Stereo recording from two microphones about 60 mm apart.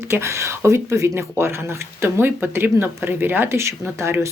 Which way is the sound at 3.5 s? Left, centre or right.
Right.